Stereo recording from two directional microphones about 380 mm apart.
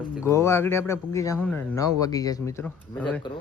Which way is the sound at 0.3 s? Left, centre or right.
Centre.